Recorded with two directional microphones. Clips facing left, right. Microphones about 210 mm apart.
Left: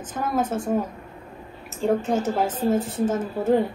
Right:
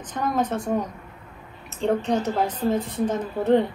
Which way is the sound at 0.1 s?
5° left (ahead or behind).